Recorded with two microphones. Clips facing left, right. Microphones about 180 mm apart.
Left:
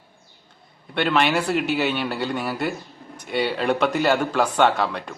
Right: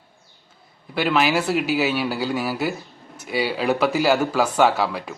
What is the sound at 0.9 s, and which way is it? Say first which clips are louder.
Speech: right 1 dB; 5° right (ahead or behind).